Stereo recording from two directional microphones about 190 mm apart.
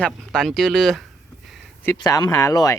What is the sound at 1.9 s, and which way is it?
Speech, 20° left (ahead or behind).